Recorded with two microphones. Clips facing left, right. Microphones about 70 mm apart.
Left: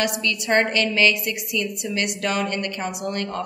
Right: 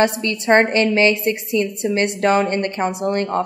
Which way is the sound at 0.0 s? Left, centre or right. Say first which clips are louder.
Right 6 dB; right.